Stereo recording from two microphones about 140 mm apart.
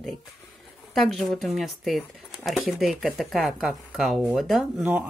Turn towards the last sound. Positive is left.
turn(degrees=0)  # may be behind; listen again after turning